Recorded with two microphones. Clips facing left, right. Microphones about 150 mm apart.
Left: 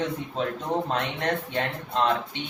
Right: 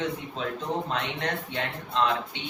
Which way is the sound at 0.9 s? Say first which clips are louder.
Left 3 dB; 40° left (ahead or behind).